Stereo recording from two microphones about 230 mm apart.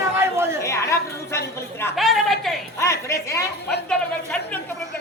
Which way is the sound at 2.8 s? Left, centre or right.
Centre.